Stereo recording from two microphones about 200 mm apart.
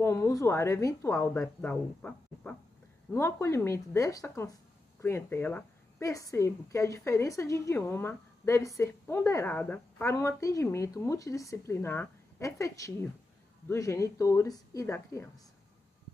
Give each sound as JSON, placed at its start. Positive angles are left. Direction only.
{"t": 0.0, "sound": "a woman's voice", "side_deg": 15}